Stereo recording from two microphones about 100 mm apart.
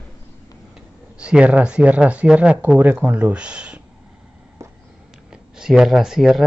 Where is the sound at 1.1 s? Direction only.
10° right (ahead or behind).